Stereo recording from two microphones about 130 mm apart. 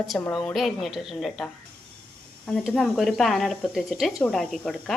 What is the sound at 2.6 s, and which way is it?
Speech, centre (ahead or behind).